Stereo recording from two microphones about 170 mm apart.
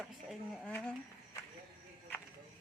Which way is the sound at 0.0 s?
Centre (ahead or behind).